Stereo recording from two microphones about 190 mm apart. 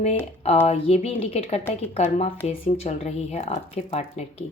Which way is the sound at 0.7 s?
30° left (ahead or behind).